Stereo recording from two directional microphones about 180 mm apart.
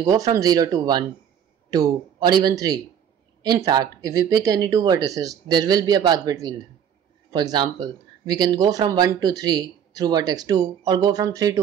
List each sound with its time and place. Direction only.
0.0 s speech: 20° right (ahead or behind)